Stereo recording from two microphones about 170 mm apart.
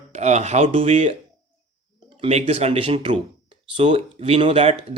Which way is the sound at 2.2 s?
35° right (ahead or behind).